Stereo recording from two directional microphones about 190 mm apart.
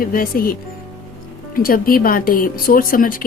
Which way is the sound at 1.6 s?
50° left (ahead or behind).